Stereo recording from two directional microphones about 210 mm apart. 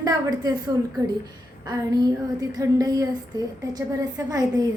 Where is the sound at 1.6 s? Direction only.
15° right (ahead or behind).